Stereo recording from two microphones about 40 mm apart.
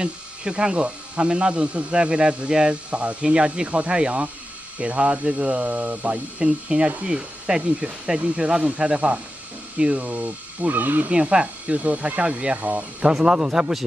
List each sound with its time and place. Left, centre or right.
0.0 s speech: right
6.4 s speech: right
11.1 s speech: right
12.5 s speech: right
13.0 s speech: centre